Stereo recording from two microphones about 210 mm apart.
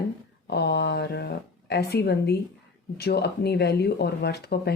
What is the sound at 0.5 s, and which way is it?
Speech, 50° left (ahead or behind).